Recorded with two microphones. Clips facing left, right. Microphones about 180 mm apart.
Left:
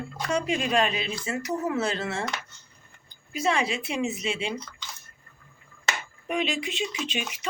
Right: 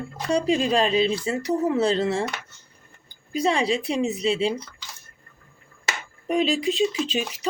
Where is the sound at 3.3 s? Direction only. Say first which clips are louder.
Right 4 dB; 35° right (ahead or behind).